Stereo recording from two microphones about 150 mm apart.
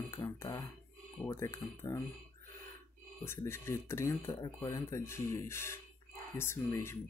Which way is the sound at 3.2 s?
15° left (ahead or behind).